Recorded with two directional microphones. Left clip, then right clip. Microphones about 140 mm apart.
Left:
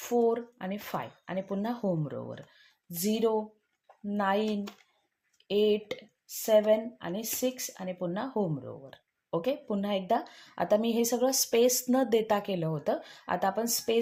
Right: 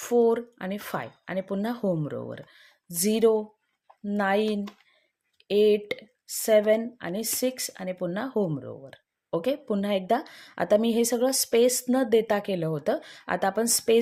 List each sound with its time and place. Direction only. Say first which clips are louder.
0.0 s speech: right 5 dB; 40° right (ahead or behind)